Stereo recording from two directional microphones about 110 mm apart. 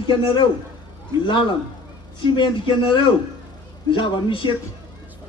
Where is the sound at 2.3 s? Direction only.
45° left (ahead or behind).